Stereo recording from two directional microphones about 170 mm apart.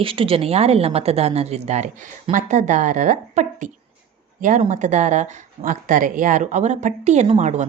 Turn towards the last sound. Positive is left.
turn(degrees=-45)  # may be behind; listen again after turning